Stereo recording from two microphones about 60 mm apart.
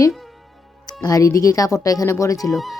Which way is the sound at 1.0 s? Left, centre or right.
Left.